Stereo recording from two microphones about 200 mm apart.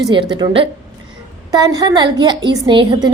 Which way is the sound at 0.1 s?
25° right (ahead or behind).